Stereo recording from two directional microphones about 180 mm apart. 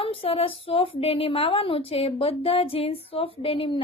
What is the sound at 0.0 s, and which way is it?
A woman's voice, 30° left (ahead or behind).